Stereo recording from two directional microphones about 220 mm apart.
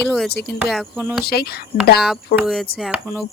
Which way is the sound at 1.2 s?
45° left (ahead or behind).